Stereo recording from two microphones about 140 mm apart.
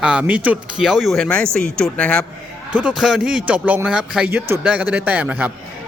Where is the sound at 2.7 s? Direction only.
5° right (ahead or behind).